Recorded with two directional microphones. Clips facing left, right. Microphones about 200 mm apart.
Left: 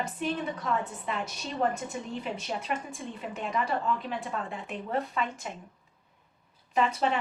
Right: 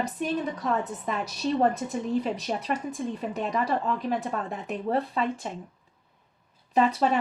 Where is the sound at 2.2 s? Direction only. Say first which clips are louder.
Right 5 dB; 35° right (ahead or behind).